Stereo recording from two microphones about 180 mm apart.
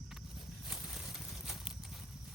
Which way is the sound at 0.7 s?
Centre (ahead or behind).